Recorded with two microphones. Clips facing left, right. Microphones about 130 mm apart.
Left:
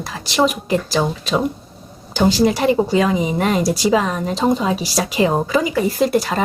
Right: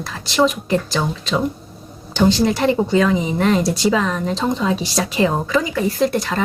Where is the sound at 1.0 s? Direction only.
20° left (ahead or behind).